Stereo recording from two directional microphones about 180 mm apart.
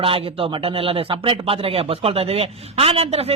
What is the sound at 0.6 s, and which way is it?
Speech, 30° right (ahead or behind).